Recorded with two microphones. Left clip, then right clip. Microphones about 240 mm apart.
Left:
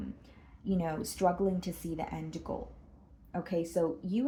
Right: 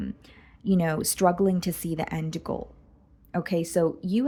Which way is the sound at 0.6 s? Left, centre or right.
Right.